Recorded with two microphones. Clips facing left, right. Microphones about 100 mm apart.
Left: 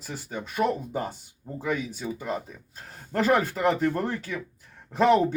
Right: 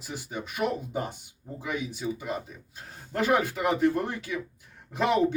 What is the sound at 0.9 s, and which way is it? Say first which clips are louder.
Speech: left 1 dB; 40° left (ahead or behind).